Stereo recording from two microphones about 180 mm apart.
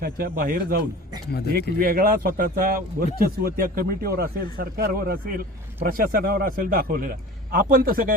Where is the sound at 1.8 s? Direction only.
55° right (ahead or behind).